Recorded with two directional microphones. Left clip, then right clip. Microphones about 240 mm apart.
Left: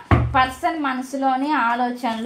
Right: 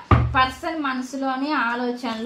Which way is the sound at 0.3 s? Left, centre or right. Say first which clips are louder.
Left 2 dB; left.